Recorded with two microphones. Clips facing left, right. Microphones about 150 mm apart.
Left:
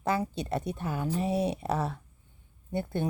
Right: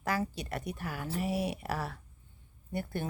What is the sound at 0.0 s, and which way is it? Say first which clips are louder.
Speech: left 4 dB; 25° left (ahead or behind).